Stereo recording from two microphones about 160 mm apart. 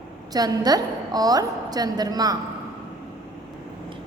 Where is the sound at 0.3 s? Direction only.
25° right (ahead or behind).